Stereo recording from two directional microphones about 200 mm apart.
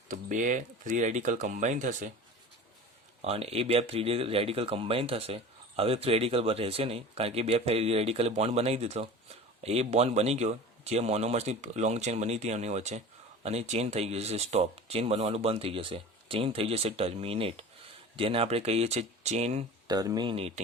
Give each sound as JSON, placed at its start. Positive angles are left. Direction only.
{"t": 0.1, "sound": "speech", "side_deg": -40}
{"t": 3.2, "sound": "speech", "side_deg": -30}
{"t": 19.9, "sound": "speech", "side_deg": -20}